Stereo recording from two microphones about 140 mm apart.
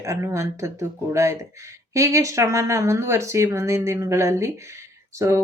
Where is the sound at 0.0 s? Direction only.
20° right (ahead or behind).